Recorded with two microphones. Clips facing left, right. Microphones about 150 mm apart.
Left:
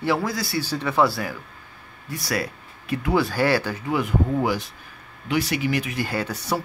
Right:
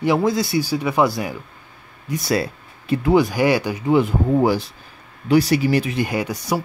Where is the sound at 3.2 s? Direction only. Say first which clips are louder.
Right 3 dB; 15° right (ahead or behind).